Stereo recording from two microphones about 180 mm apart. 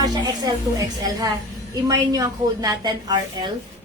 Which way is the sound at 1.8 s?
20° right (ahead or behind).